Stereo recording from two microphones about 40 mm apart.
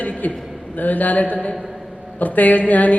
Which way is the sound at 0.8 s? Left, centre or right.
Left.